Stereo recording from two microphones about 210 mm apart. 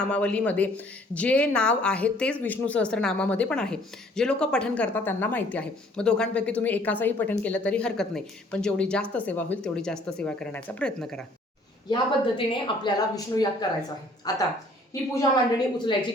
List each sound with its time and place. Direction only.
0.0 s a woman's voice: 5° left (ahead or behind)
12.5 s speech: 20° left (ahead or behind)